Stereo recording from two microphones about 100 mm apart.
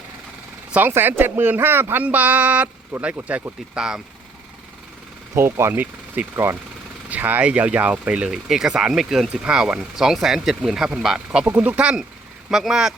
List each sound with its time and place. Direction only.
0.7 s speech: 20° right (ahead or behind)
5.3 s speech: 30° right (ahead or behind); by 11.4 s 5° right (ahead or behind)
11.4 s speech: 20° right (ahead or behind)